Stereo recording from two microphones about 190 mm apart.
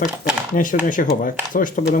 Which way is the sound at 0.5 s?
45° left (ahead or behind).